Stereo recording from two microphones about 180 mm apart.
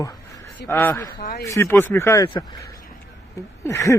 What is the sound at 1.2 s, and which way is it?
Speech, 55° left (ahead or behind).